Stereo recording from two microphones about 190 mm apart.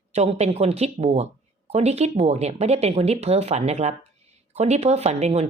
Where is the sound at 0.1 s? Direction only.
35° right (ahead or behind).